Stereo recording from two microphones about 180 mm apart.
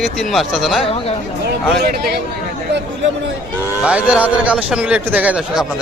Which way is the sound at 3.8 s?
5° right (ahead or behind).